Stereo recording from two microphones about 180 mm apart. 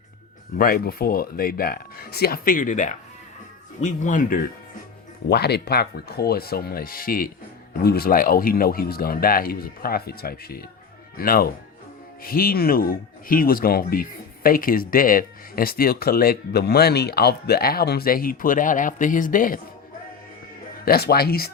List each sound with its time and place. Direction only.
0.5 s speech: 55° left (ahead or behind)
5.3 s speech: 65° left (ahead or behind); by 19.5 s 50° left (ahead or behind)
20.8 s speech: 60° left (ahead or behind)